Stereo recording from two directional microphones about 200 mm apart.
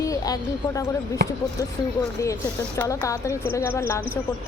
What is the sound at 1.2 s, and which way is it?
Speech, 50° right (ahead or behind).